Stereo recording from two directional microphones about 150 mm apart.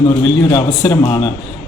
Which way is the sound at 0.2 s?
15° left (ahead or behind).